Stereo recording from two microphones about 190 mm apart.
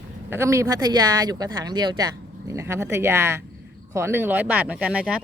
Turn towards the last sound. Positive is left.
turn(degrees=-5)  # may be behind; listen again after turning